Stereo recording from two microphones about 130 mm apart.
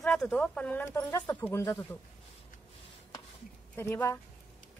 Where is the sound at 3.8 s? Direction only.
15° left (ahead or behind).